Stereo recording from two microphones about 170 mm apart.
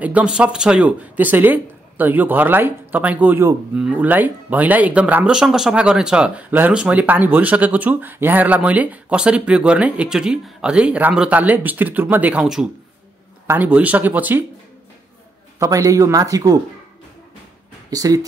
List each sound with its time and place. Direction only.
0.0 s speech: 5° right (ahead or behind)
15.6 s speech: 20° right (ahead or behind)
17.8 s speech: 20° right (ahead or behind)